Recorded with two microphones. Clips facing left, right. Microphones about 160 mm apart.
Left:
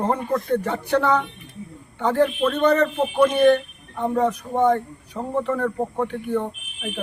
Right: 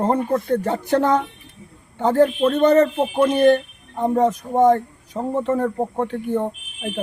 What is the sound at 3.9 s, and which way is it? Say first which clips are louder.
Speech: right 3 dB; 35° right (ahead or behind).